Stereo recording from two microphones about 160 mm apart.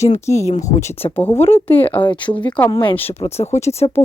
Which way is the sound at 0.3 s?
45° left (ahead or behind).